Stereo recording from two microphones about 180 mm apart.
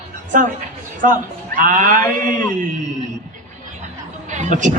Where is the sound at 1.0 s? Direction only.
50° right (ahead or behind).